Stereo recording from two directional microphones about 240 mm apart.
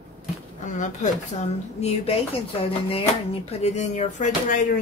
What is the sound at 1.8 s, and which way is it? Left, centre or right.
Speech, left.